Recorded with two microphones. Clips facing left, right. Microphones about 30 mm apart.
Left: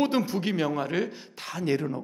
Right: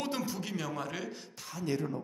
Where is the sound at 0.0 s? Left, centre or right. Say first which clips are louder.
Left 10 dB; left.